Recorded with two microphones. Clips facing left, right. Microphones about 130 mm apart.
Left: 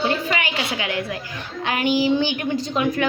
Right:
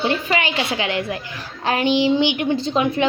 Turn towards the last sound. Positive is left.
turn(degrees=-30)  # may be behind; listen again after turning